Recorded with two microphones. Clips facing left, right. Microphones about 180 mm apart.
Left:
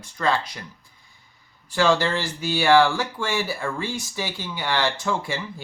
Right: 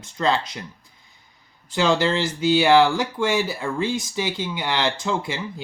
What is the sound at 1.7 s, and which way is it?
Speech, 20° right (ahead or behind).